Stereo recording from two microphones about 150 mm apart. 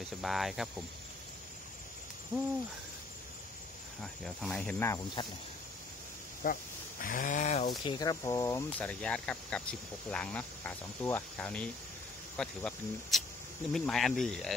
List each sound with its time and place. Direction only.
0.0 s speech: centre (ahead or behind)
4.0 s speech: centre (ahead or behind)
6.4 s speech: 70° left (ahead or behind); by 7.6 s 50° left (ahead or behind)
7.8 s speech: 30° left (ahead or behind)
8.7 s speech: 5° left (ahead or behind)